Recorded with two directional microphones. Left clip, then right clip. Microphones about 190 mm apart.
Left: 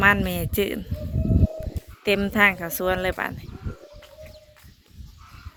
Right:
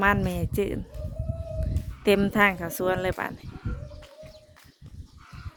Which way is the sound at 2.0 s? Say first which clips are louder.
Right 1 dB; 30° right (ahead or behind).